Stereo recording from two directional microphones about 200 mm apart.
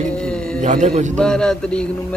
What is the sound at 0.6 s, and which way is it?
Speech, 35° right (ahead or behind).